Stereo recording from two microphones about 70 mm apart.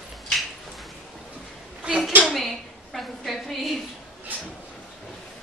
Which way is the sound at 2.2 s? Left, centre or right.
Centre.